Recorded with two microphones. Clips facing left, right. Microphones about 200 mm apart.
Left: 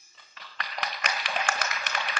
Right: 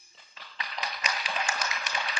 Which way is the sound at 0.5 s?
55° left (ahead or behind).